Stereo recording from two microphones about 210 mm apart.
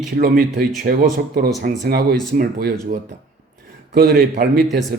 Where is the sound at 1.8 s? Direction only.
50° right (ahead or behind).